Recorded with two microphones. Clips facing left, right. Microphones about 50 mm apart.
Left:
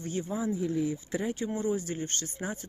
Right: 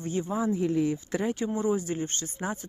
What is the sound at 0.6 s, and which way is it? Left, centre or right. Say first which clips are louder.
Speech: right 4 dB; right.